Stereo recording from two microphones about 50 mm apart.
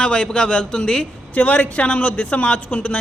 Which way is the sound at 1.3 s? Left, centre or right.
Left.